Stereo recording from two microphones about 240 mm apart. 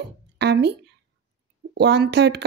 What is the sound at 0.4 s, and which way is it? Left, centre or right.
Speech, right.